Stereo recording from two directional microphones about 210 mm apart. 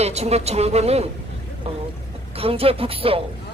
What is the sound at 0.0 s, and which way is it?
Speech, 30° right (ahead or behind).